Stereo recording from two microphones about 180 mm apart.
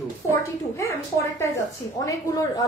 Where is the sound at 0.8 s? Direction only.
15° left (ahead or behind).